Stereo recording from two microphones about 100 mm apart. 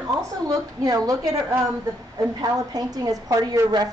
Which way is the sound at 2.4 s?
40° right (ahead or behind).